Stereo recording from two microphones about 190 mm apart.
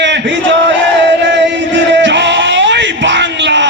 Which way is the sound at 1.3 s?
70° right (ahead or behind).